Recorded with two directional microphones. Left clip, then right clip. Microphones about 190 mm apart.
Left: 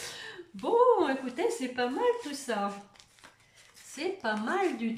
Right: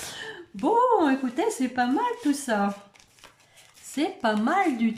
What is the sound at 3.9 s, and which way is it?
Speech, 40° right (ahead or behind).